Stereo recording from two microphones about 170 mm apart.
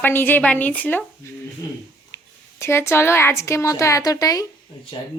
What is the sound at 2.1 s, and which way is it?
A woman's voice, 15° left (ahead or behind).